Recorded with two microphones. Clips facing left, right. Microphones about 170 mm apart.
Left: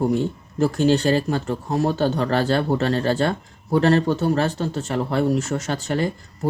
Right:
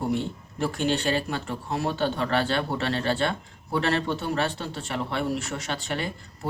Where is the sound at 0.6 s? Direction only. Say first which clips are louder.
Left 7 dB; 40° left (ahead or behind).